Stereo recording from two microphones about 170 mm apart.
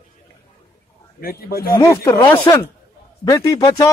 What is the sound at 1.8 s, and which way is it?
A man's voice, 20° left (ahead or behind).